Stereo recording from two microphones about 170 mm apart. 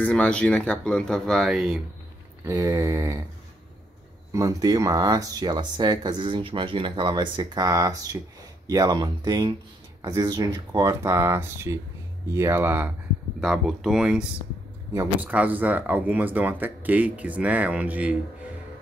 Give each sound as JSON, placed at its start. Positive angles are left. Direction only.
{"t": 0.0, "sound": "speech", "side_deg": 5}
{"t": 2.4, "sound": "speech", "side_deg": -20}
{"t": 4.3, "sound": "speech", "side_deg": -20}